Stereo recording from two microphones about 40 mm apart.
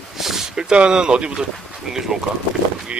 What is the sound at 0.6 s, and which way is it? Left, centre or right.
Speech, right.